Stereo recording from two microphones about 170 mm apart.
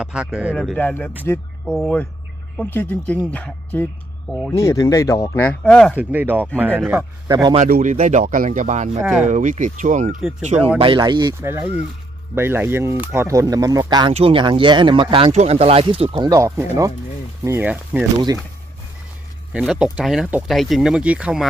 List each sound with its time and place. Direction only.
0.0 s speech: 5° right (ahead or behind)
4.3 s speech: centre (ahead or behind)
4.5 s speech: 20° left (ahead or behind)
6.0 s speech: 10° right (ahead or behind)
7.7 s speech: 50° right (ahead or behind)
10.8 s speech: 30° right (ahead or behind)
11.3 s speech: 15° right (ahead or behind)
14.1 s speech: 35° right (ahead or behind)
16.3 s speech: 20° right (ahead or behind)
19.5 s speech: 5° right (ahead or behind)